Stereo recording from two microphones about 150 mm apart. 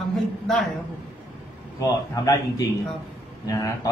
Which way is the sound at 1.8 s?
20° left (ahead or behind).